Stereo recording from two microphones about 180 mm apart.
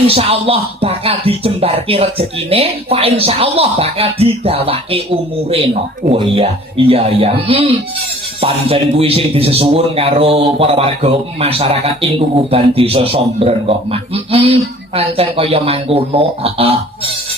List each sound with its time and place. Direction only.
0.1 s speech: 30° right (ahead or behind)